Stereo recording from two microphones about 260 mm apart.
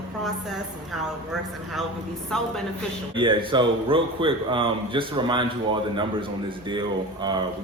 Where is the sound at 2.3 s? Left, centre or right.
Centre.